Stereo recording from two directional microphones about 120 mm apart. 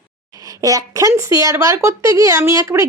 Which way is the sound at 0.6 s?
30° right (ahead or behind).